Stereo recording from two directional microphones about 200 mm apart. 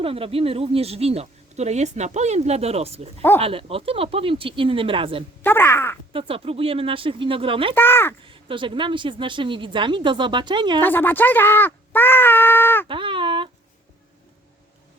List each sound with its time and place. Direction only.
0.0 s speech: 30° right (ahead or behind)
3.2 s speech: 10° left (ahead or behind)
3.4 s a woman's voice: 30° right (ahead or behind)
5.4 s speech: 10° left (ahead or behind)
6.1 s a woman's voice: 25° right (ahead or behind)
7.8 s speech: 10° left (ahead or behind)
8.2 s a woman's voice: 25° right (ahead or behind)
10.8 s speech: 10° left (ahead or behind)
12.9 s a sound: 25° right (ahead or behind)